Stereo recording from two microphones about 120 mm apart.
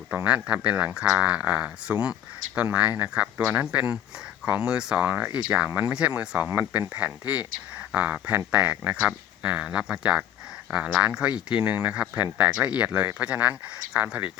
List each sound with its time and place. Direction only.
0.1 s speech: 10° right (ahead or behind)